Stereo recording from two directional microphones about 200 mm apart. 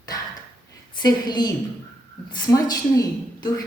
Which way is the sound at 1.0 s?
20° left (ahead or behind).